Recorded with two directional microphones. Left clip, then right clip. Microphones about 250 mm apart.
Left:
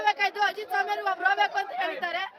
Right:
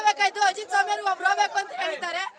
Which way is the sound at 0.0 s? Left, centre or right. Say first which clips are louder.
Right 3 dB; centre.